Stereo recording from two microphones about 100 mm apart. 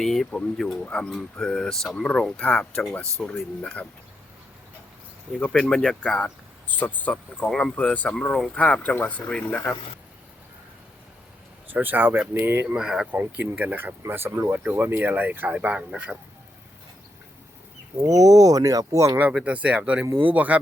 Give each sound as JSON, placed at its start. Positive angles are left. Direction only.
{"t": 0.0, "sound": "speech", "side_deg": 5}
{"t": 5.3, "sound": "speech", "side_deg": 10}
{"t": 11.7, "sound": "speech", "side_deg": -20}
{"t": 12.6, "sound": "speech", "side_deg": -5}
{"t": 13.1, "sound": "speech", "side_deg": -20}
{"t": 18.0, "sound": "speech", "side_deg": -35}
{"t": 19.2, "sound": "speech", "side_deg": -10}